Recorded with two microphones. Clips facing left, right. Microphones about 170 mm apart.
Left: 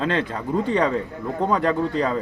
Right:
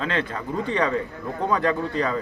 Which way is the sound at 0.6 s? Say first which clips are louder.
Left 1 dB; 30° left (ahead or behind).